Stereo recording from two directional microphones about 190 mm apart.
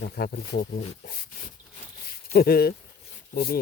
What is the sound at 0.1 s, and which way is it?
Speech, 55° left (ahead or behind).